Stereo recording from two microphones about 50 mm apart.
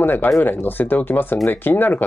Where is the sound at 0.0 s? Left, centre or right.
Left.